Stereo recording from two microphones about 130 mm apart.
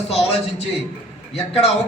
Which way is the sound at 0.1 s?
55° left (ahead or behind).